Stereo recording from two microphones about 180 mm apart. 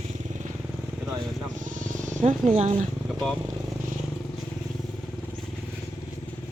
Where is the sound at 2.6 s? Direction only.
40° right (ahead or behind).